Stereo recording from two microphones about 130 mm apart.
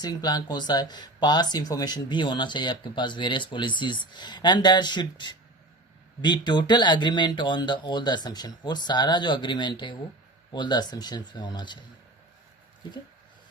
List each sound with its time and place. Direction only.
0.0 s speech: 30° left (ahead or behind)